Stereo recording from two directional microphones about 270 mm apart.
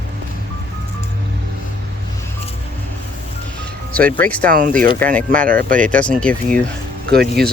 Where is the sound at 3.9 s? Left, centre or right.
Centre.